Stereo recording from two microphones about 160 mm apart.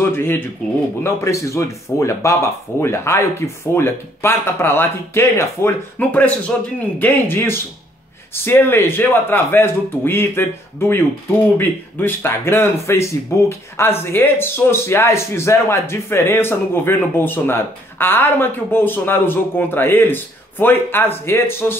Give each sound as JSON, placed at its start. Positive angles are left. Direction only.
{"t": 0.0, "sound": "speech", "side_deg": 15}